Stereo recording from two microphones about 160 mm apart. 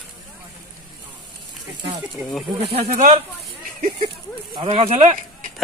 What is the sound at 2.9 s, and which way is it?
Speech, 60° right (ahead or behind).